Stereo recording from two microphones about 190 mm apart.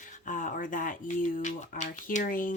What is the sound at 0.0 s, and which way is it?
Speech, 40° left (ahead or behind).